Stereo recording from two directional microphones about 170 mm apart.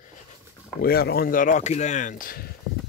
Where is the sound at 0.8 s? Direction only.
65° left (ahead or behind).